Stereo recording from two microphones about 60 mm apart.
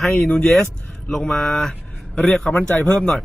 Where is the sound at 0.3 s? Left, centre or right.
Centre.